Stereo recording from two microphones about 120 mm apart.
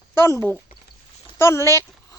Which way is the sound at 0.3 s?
20° left (ahead or behind).